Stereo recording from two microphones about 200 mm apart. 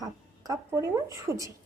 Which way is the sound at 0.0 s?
20° right (ahead or behind).